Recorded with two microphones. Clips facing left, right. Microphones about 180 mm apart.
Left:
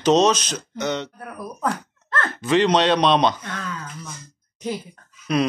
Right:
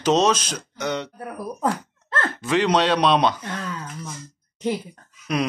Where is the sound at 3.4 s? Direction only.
25° right (ahead or behind).